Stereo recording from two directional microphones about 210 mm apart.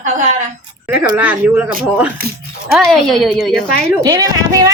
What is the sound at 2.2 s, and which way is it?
Speech, 45° right (ahead or behind).